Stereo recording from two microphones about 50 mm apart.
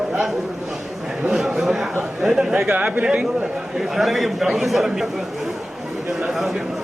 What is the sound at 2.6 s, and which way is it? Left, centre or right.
Speech, right.